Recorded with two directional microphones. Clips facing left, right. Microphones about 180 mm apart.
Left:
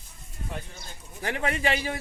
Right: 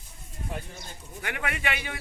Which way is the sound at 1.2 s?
30° left (ahead or behind).